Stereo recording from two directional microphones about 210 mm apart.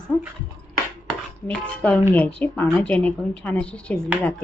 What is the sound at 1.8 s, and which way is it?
A woman's voice, 5° left (ahead or behind).